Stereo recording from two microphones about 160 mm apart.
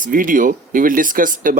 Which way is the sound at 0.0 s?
60° right (ahead or behind).